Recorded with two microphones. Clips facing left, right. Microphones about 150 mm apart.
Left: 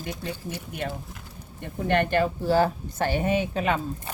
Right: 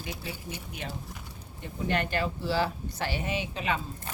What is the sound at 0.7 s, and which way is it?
Speech, 55° left (ahead or behind).